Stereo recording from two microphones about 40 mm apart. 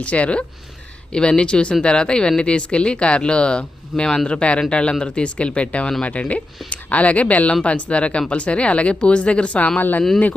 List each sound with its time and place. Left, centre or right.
0.0 s speech: left